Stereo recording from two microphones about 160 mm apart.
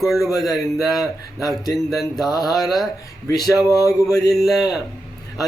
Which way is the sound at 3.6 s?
20° left (ahead or behind).